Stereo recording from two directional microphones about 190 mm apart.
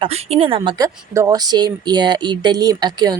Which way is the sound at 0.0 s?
30° right (ahead or behind).